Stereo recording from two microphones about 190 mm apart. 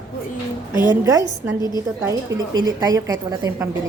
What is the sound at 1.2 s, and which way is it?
Speech, 20° left (ahead or behind).